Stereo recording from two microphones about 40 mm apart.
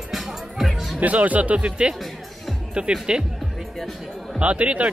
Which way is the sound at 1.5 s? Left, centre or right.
Right.